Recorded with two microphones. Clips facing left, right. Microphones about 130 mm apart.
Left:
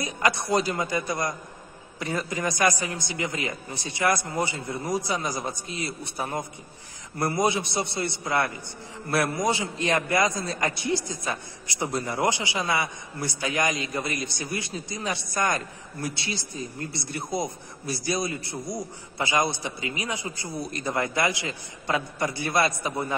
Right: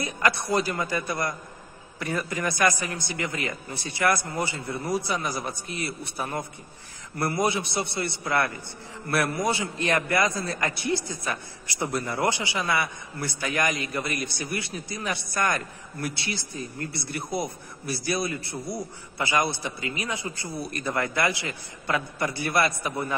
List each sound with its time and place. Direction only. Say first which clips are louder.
0.0 s a man's voice: even; 20° left (ahead or behind)